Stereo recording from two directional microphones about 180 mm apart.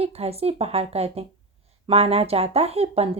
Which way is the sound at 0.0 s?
35° right (ahead or behind).